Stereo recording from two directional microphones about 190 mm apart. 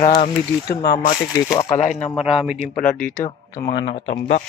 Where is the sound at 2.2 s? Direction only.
Centre (ahead or behind).